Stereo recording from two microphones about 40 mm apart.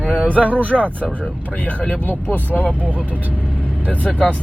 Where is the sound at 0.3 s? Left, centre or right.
Right.